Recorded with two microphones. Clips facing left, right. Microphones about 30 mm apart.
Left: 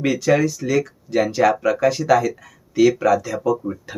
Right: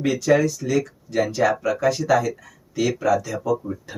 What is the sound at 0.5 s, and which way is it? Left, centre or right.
Speech, left.